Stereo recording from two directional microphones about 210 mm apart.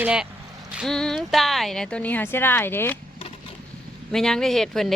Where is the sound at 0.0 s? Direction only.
5° right (ahead or behind).